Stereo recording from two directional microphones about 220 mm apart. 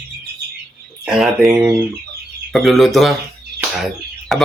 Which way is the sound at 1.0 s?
Centre (ahead or behind).